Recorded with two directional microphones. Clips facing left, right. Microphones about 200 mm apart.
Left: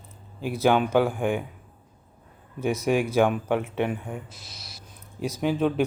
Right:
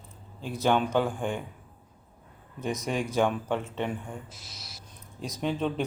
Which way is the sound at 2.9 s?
10° left (ahead or behind).